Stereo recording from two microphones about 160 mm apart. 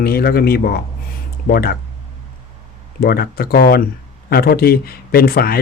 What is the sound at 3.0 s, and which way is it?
Speech, 75° left (ahead or behind).